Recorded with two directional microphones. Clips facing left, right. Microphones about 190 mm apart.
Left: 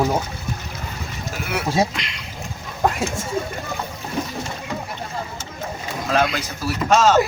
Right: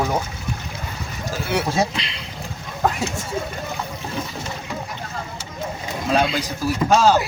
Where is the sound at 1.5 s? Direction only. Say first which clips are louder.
Even; 30° right (ahead or behind).